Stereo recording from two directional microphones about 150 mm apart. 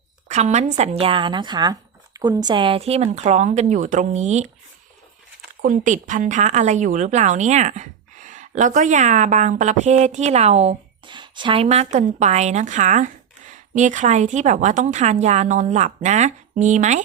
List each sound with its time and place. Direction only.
0.3 s a woman's voice: 50° right (ahead or behind)
5.6 s a woman's voice: 60° right (ahead or behind)
11.1 s a woman's voice: 30° right (ahead or behind); by 17.0 s 55° right (ahead or behind)